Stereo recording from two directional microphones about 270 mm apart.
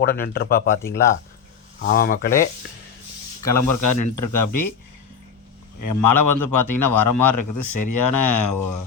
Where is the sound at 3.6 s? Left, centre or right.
Left.